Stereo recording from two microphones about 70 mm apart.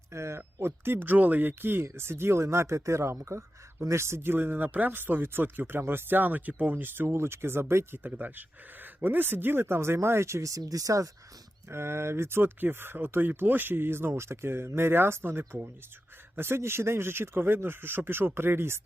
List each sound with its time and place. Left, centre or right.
0.1 s speech: right
10.6 s speech: right
11.7 s speech: right